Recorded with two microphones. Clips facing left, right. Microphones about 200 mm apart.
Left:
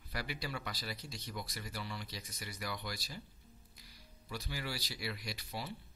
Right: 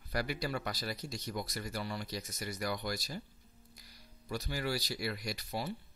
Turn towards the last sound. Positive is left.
turn(degrees=-45)  # may be behind; listen again after turning